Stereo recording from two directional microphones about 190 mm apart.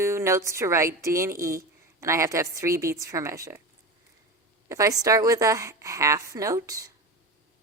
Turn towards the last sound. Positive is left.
turn(degrees=-20)  # may be behind; listen again after turning